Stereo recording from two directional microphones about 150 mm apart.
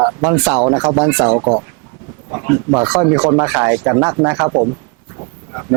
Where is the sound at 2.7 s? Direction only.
15° right (ahead or behind).